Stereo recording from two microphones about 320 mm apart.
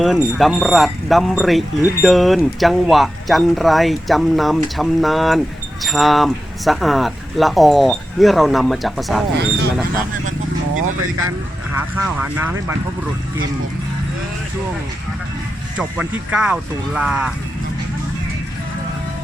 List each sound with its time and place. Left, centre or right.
0.0 s speech: centre
10.8 s speech: right
11.8 s speech: centre
15.8 s speech: centre